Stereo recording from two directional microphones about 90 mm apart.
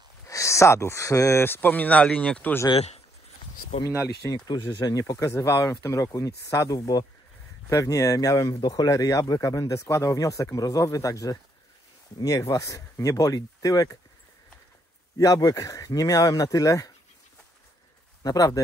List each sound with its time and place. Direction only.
0.3 s speech: 35° left (ahead or behind)
1.4 s speech: 20° left (ahead or behind)
4.5 s speech: 50° left (ahead or behind)
8.8 s speech: 40° left (ahead or behind)
15.1 s speech: 45° left (ahead or behind)
18.2 s speech: 45° left (ahead or behind)